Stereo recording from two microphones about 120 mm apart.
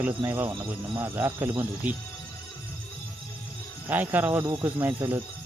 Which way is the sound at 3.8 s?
15° right (ahead or behind).